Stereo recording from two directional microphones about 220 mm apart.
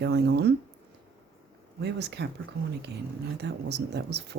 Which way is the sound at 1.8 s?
50° right (ahead or behind).